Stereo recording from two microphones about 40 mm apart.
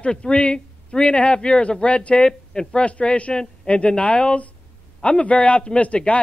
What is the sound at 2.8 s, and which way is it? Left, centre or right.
A man's voice, left.